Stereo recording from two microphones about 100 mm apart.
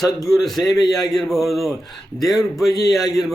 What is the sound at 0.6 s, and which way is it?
Speech, 40° left (ahead or behind).